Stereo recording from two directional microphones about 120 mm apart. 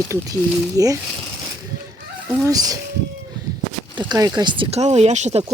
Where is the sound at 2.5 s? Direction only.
30° right (ahead or behind).